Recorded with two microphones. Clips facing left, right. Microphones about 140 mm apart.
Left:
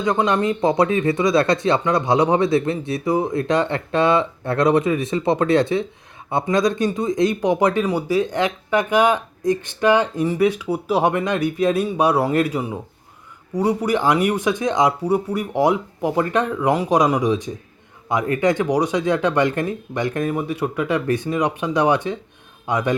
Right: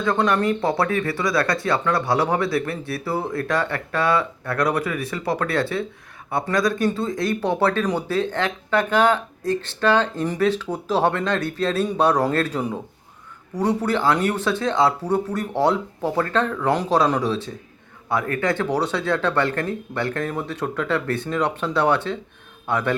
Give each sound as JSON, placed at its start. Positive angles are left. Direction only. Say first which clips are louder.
{"t": 0.0, "sound": "a man's voice", "louder": "left 1 dB", "side_deg": 15}